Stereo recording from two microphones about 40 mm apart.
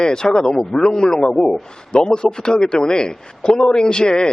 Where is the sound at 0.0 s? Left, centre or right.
Centre.